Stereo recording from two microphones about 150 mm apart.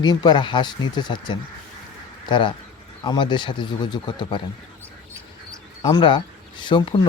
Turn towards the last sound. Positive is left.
turn(degrees=30)  # may be behind; listen again after turning